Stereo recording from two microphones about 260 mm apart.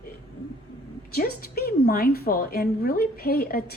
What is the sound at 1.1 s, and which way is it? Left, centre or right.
A woman's voice, left.